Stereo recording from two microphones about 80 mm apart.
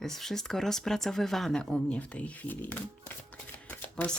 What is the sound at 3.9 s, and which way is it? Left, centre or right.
Speech, centre.